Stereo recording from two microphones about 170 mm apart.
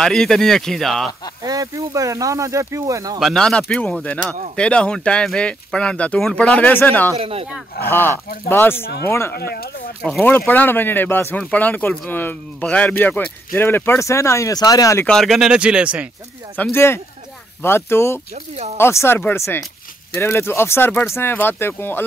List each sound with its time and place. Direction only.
0.0 s speech: 5° left (ahead or behind)
1.4 s speech: 20° right (ahead or behind)
3.2 s speech: centre (ahead or behind)
7.2 s speech: 35° right (ahead or behind)
7.9 s speech: 10° left (ahead or behind)
9.3 s speech: 65° left (ahead or behind)
10.0 s speech: 5° left (ahead or behind)
15.0 s speech: centre (ahead or behind)
16.5 s speech: 10° left (ahead or behind)